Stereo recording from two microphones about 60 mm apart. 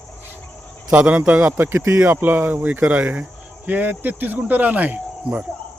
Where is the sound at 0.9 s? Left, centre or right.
Right.